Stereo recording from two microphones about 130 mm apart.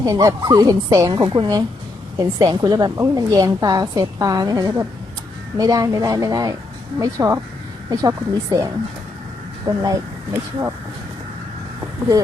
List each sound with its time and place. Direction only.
0.0 s a woman's voice: 25° right (ahead or behind)